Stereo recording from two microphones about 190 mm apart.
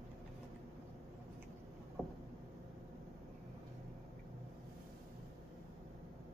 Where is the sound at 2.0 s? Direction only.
5° left (ahead or behind).